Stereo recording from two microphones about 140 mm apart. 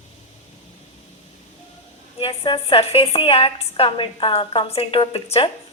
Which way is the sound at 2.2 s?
40° left (ahead or behind).